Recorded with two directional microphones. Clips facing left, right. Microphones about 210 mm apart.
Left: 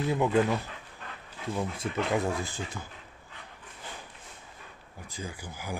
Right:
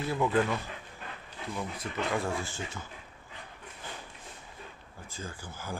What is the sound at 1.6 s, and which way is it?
Speech, 20° left (ahead or behind).